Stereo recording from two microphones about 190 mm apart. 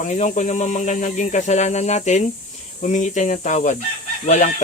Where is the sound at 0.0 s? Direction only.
40° left (ahead or behind).